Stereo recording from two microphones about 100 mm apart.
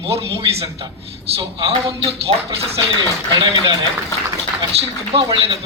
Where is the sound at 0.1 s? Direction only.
75° right (ahead or behind).